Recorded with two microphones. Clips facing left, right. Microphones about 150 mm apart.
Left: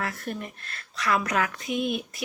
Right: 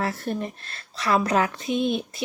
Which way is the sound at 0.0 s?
30° right (ahead or behind).